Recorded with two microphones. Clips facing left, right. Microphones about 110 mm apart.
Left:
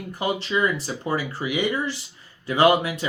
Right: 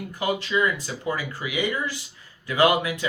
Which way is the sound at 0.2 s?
30° left (ahead or behind).